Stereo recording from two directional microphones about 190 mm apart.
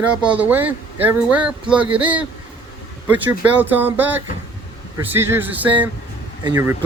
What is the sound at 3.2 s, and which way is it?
Speech, 10° right (ahead or behind).